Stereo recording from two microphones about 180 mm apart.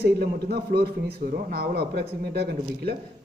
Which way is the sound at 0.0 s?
60° right (ahead or behind).